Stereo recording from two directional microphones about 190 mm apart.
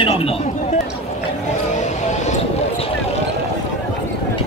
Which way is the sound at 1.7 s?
40° left (ahead or behind).